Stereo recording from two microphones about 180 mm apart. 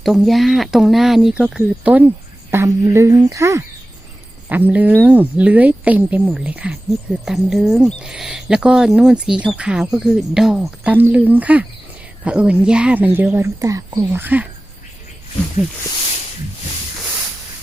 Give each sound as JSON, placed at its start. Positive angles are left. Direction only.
{"t": 0.0, "sound": "speech", "side_deg": 0}